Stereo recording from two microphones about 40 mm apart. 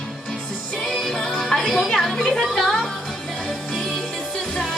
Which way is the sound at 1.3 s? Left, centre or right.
Centre.